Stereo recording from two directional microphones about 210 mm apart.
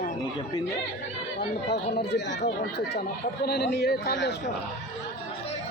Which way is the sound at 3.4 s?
50° left (ahead or behind).